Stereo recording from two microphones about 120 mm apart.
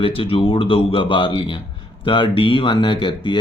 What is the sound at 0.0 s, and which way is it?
Speech, 50° left (ahead or behind).